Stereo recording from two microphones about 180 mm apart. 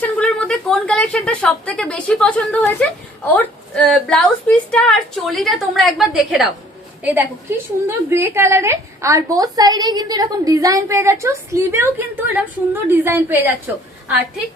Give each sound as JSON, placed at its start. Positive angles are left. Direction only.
{"t": 0.0, "sound": "a woman's voice", "side_deg": 5}